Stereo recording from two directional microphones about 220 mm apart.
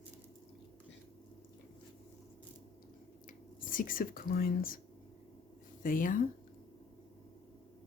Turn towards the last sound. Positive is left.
turn(degrees=40)  # may be behind; listen again after turning